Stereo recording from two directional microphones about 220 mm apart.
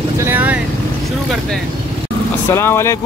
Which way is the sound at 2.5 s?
10° left (ahead or behind).